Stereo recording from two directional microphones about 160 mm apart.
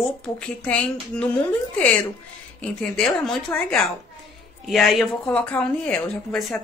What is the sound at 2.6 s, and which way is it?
A woman's voice, 5° left (ahead or behind).